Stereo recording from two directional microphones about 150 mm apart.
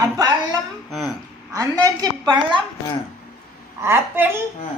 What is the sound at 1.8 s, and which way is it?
Speech, 25° right (ahead or behind).